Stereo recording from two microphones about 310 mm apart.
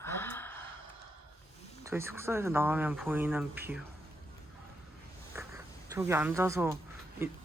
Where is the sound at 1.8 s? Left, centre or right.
Centre.